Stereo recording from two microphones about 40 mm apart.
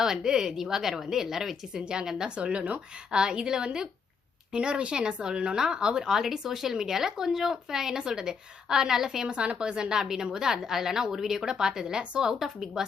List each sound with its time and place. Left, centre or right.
0.0 s a woman's voice: centre
1.7 s a woman's voice: right
2.3 s speech: right
3.1 s a woman's voice: right
9.3 s a woman's voice: right; by 12.8 s centre